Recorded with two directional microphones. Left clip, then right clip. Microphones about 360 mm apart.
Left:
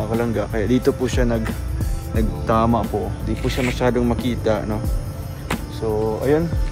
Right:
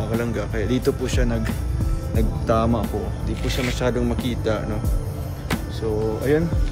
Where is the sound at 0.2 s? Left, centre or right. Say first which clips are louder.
Left 4 dB; centre.